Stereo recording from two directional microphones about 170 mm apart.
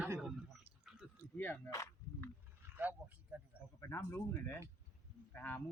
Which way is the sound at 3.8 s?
15° left (ahead or behind).